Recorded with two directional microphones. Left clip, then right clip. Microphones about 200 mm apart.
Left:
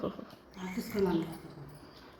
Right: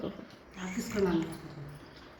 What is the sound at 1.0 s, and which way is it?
Speech, 20° left (ahead or behind).